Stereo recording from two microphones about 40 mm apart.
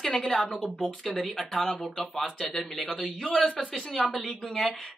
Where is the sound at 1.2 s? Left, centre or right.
Centre.